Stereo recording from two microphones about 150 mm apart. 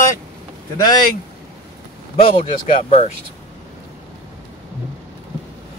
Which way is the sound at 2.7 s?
50° left (ahead or behind).